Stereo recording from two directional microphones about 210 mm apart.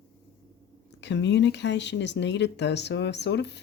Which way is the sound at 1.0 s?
55° left (ahead or behind).